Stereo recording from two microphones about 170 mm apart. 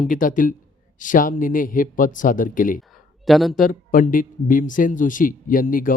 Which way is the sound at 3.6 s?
55° left (ahead or behind).